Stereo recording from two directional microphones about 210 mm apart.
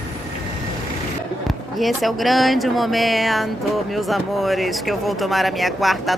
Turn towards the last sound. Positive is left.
turn(degrees=0)  # may be behind; listen again after turning